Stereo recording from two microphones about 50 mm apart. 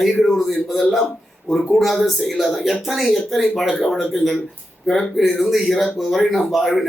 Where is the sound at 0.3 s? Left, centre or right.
Centre.